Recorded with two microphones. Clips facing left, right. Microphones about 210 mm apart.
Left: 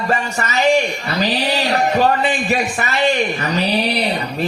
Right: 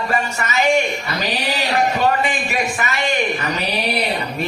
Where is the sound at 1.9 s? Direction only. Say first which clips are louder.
Left 3 dB; 35° left (ahead or behind).